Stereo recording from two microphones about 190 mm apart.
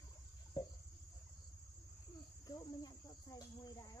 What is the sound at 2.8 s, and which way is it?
Cricket, 20° left (ahead or behind).